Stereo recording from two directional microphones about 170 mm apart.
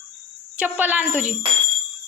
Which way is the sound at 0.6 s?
10° right (ahead or behind).